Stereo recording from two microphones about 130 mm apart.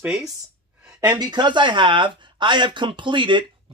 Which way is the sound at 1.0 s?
35° right (ahead or behind).